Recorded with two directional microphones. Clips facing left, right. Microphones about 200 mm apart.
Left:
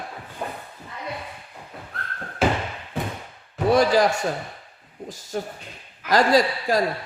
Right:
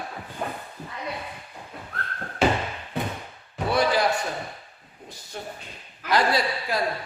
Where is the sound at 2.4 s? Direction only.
Centre (ahead or behind).